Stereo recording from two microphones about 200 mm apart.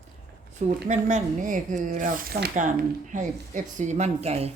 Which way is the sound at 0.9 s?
35° right (ahead or behind).